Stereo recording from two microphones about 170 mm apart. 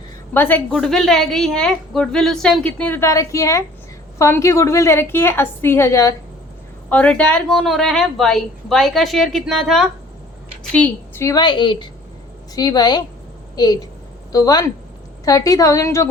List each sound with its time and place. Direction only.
0.3 s a woman's voice: 10° left (ahead or behind)
6.9 s a woman's voice: 5° left (ahead or behind); by 13.1 s 25° left (ahead or behind)
14.3 s a woman's voice: 20° left (ahead or behind)